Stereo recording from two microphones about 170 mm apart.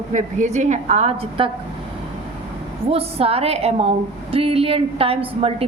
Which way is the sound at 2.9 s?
35° right (ahead or behind).